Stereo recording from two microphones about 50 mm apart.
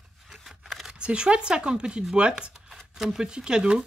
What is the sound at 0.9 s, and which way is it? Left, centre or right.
Speech, right.